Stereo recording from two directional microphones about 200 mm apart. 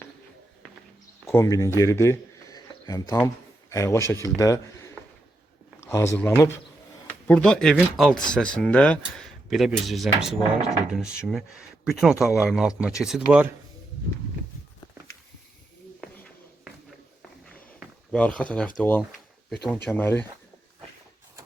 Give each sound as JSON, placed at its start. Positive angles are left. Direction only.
{"t": 1.3, "sound": "speech", "side_deg": 15}
{"t": 17.4, "sound": "a sound", "side_deg": 5}
{"t": 18.8, "sound": "speech", "side_deg": 10}